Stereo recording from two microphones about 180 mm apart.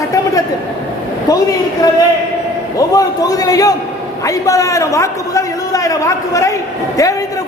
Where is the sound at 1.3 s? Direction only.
20° left (ahead or behind).